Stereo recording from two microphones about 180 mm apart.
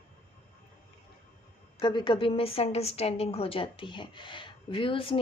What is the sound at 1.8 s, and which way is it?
A woman's voice, 25° left (ahead or behind).